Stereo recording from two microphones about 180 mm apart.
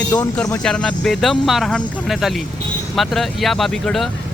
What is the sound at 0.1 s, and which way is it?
Speech, 5° left (ahead or behind).